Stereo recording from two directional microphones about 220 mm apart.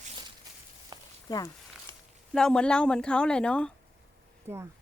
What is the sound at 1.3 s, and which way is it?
Speech, 15° left (ahead or behind).